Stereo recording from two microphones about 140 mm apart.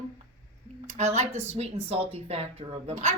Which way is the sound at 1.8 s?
45° right (ahead or behind).